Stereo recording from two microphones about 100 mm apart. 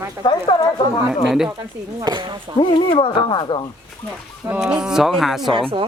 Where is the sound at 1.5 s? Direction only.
40° right (ahead or behind).